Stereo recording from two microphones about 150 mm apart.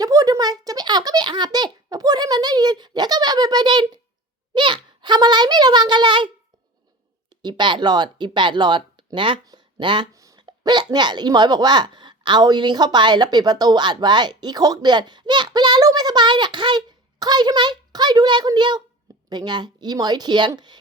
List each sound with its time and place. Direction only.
0.0 s a child's voice: 25° right (ahead or behind)
7.4 s speech: 30° right (ahead or behind)